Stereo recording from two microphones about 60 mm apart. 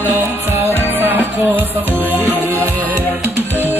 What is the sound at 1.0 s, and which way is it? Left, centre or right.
Music, right.